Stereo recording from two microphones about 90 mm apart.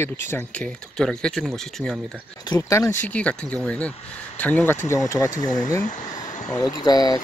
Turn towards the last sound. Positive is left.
turn(degrees=45)  # may be behind; listen again after turning